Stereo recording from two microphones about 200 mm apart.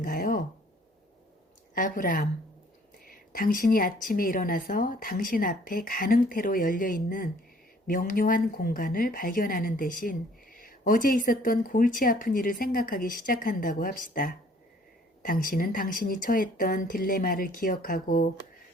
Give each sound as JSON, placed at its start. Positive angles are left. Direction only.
{"t": 0.0, "sound": "speech", "side_deg": 40}
{"t": 1.7, "sound": "a woman's voice", "side_deg": 45}